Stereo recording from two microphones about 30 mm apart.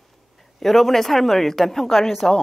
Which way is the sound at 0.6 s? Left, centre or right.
Centre.